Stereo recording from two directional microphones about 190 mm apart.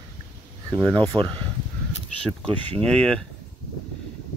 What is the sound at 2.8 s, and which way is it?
Speech, 5° left (ahead or behind).